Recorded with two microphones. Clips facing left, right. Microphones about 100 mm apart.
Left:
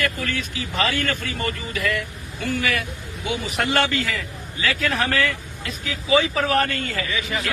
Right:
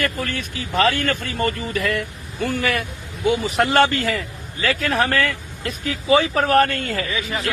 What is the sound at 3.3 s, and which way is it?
A man's voice, 35° right (ahead or behind).